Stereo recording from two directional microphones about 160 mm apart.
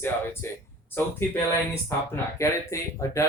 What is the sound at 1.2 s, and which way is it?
Speech, 15° left (ahead or behind).